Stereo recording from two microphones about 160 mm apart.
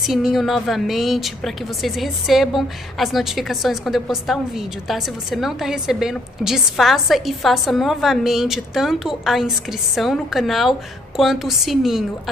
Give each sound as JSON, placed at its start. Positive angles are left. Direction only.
{"t": 0.0, "sound": "a woman's voice", "side_deg": 0}